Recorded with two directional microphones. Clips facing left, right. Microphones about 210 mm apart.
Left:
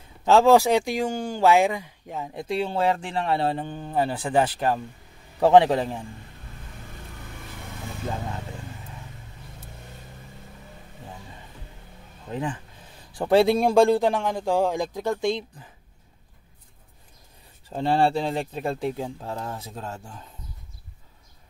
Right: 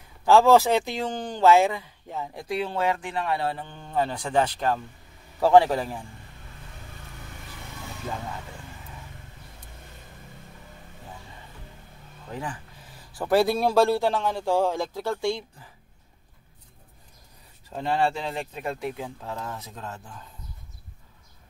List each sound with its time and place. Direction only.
0.2 s speech: 20° left (ahead or behind)
3.9 s a man's voice: 10° left (ahead or behind)
12.3 s a man's voice: 20° left (ahead or behind)
17.6 s speech: 30° left (ahead or behind)